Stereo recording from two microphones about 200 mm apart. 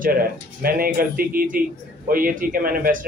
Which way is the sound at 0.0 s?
45° right (ahead or behind).